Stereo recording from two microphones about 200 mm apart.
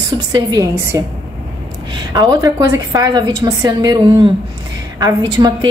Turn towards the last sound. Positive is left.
turn(degrees=-20)  # may be behind; listen again after turning